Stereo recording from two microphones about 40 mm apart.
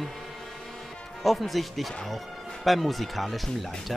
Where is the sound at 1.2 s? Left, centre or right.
Centre.